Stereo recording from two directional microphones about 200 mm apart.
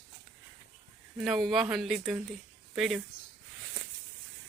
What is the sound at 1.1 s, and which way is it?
Speech, centre (ahead or behind).